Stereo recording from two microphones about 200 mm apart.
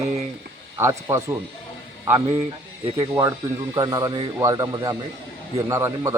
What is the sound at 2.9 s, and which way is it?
Speech, 15° right (ahead or behind).